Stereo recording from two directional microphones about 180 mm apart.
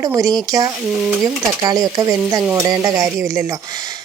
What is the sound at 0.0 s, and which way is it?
Speech, 20° right (ahead or behind).